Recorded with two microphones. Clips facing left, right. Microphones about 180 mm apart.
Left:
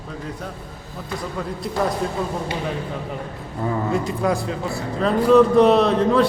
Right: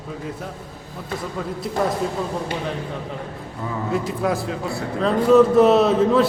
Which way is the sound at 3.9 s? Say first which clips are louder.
Right 2 dB; centre (ahead or behind).